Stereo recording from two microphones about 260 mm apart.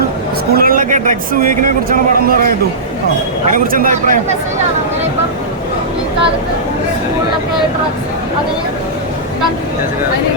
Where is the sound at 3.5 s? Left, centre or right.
Right.